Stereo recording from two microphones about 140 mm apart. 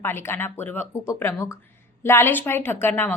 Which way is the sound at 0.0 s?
15° left (ahead or behind).